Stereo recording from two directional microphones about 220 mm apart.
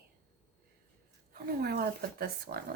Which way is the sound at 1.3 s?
45° right (ahead or behind).